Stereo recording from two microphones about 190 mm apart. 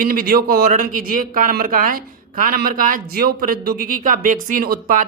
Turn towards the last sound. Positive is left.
turn(degrees=-50)  # may be behind; listen again after turning